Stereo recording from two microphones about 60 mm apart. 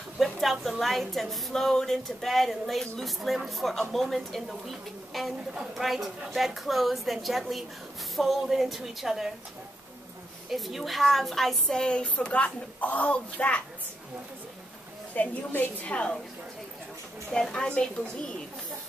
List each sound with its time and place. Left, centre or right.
0.2 s a woman's voice: centre
10.5 s a woman's voice: centre; by 13.6 s left
15.1 s a woman's voice: left
17.3 s a woman's voice: centre